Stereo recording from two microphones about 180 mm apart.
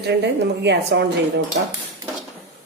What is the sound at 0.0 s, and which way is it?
A woman's voice, 70° right (ahead or behind).